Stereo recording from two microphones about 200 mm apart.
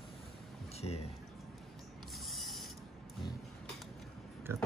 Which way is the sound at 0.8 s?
30° left (ahead or behind).